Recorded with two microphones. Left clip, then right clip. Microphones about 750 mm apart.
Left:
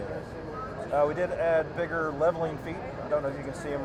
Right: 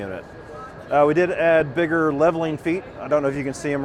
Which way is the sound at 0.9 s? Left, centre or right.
Right.